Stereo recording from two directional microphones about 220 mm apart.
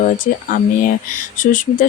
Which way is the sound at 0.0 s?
40° left (ahead or behind).